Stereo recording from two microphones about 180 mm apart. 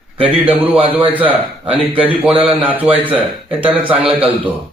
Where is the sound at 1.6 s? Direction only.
30° right (ahead or behind).